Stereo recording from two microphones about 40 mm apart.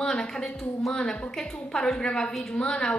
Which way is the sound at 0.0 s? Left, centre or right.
Centre.